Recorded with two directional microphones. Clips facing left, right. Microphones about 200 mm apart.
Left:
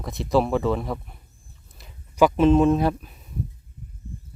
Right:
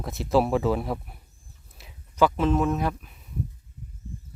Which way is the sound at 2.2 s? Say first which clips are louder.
Left 5 dB; 15° left (ahead or behind).